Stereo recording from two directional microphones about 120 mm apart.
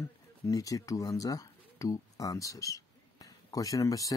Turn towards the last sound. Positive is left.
turn(degrees=30)  # may be behind; listen again after turning